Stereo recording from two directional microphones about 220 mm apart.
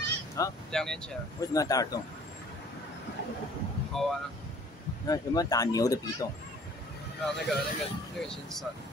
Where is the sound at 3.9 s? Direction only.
Centre (ahead or behind).